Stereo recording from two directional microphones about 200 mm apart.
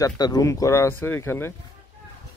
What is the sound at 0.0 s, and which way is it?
Speech, 20° left (ahead or behind).